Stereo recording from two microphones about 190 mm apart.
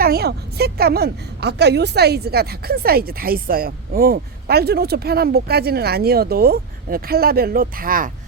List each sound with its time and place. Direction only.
0.0 s a woman's voice: 55° right (ahead or behind)